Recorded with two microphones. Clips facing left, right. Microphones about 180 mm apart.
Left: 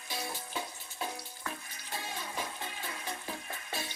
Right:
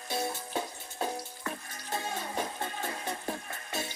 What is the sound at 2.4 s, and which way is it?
Music, 50° right (ahead or behind).